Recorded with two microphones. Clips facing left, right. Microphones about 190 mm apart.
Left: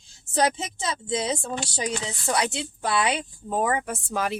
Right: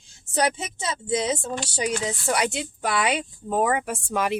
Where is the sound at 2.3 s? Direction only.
15° right (ahead or behind).